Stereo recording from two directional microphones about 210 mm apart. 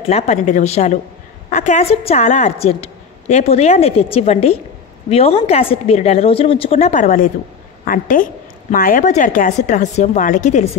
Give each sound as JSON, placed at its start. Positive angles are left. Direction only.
{"t": 0.1, "sound": "a woman's voice", "side_deg": 35}